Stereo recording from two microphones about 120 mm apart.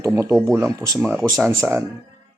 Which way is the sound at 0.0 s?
25° right (ahead or behind).